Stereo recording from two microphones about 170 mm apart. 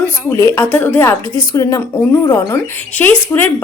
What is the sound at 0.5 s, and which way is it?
Speech, 15° left (ahead or behind).